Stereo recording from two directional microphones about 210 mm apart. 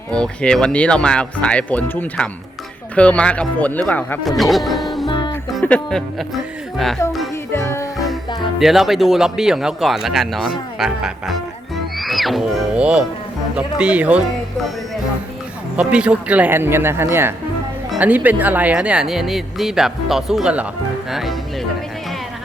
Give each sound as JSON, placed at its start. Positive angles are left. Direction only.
{"t": 0.1, "sound": "speech", "side_deg": 5}
{"t": 5.0, "sound": "music", "side_deg": 20}
{"t": 5.5, "sound": "speech", "side_deg": 5}
{"t": 7.0, "sound": "music", "side_deg": 15}
{"t": 8.5, "sound": "speech", "side_deg": 0}
{"t": 11.9, "sound": "music", "side_deg": 0}
{"t": 13.6, "sound": "speech", "side_deg": -5}
{"t": 15.7, "sound": "speech", "side_deg": -5}